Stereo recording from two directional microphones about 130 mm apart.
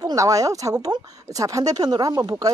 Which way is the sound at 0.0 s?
25° right (ahead or behind).